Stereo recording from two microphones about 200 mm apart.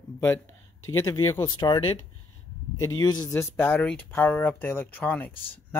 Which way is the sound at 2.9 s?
20° left (ahead or behind).